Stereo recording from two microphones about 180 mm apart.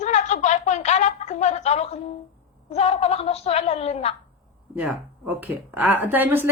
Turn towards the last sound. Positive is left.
turn(degrees=-10)  # may be behind; listen again after turning